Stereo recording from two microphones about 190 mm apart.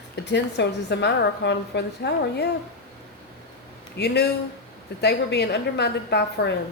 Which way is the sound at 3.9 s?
60° left (ahead or behind).